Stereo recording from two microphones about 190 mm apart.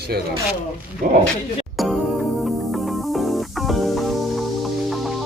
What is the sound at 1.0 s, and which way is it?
Speech, 50° right (ahead or behind).